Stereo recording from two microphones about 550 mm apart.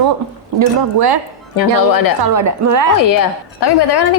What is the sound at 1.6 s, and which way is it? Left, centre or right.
Speech, left.